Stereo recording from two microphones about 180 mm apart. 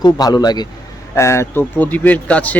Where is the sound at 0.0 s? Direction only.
20° left (ahead or behind).